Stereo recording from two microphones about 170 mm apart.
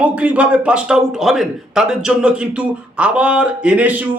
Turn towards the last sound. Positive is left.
turn(degrees=-10)  # may be behind; listen again after turning